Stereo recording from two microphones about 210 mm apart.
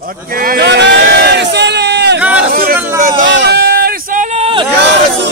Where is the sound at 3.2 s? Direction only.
55° right (ahead or behind); by 4.6 s 30° right (ahead or behind).